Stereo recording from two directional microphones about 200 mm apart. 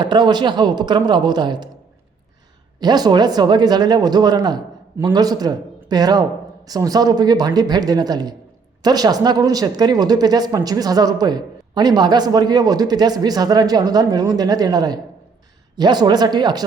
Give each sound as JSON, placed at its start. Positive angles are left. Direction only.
{"t": 0.0, "sound": "speech", "side_deg": -20}
{"t": 2.8, "sound": "speech", "side_deg": -20}